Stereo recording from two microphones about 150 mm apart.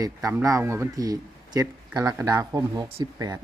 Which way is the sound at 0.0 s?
25° right (ahead or behind).